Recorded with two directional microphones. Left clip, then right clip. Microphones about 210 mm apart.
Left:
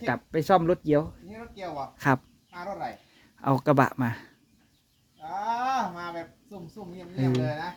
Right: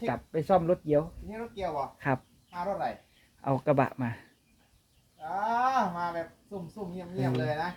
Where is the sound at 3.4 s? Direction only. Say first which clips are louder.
Left 4 dB; 35° left (ahead or behind).